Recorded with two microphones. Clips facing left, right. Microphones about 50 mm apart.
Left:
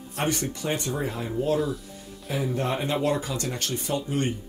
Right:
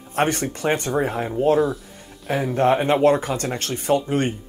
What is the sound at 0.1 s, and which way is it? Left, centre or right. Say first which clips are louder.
Speech: right 6 dB; right.